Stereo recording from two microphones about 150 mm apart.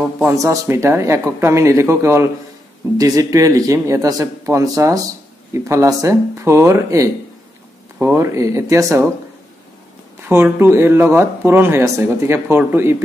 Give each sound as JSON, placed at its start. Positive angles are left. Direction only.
{"t": 0.2, "sound": "speech", "side_deg": -20}
{"t": 10.2, "sound": "speech", "side_deg": -15}